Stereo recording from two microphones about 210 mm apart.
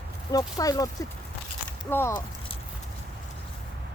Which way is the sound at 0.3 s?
15° left (ahead or behind).